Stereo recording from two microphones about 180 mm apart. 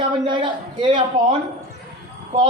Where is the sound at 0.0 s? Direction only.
25° right (ahead or behind).